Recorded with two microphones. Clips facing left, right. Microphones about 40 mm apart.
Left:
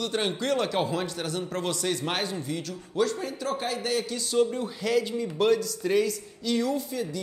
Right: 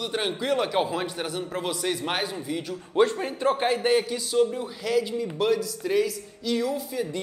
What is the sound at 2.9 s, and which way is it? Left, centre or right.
A man's voice, right.